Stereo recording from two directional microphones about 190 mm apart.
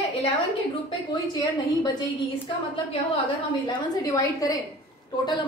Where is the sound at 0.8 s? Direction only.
20° left (ahead or behind).